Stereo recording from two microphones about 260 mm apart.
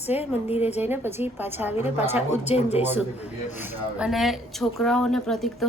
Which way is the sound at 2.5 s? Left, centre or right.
Left.